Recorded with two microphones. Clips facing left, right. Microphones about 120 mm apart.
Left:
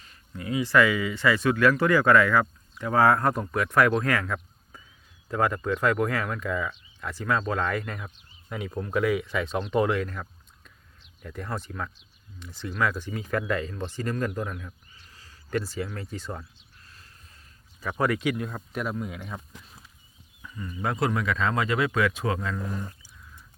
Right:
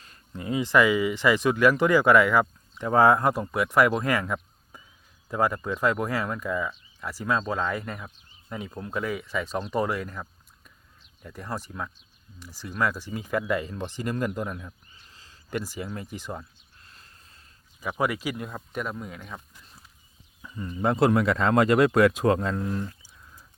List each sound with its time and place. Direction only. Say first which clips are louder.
0.3 s speech: even; 25° right (ahead or behind)
8.5 s speech: left 4 dB; centre (ahead or behind)
17.7 s speech: left 1 dB; 15° right (ahead or behind); by 19.4 s 5° left (ahead or behind)
20.4 s a sound: right 3 dB; 25° right (ahead or behind)
20.7 s speech: right 5 dB; 30° right (ahead or behind)
21.1 s speech: right 5 dB; 50° right (ahead or behind)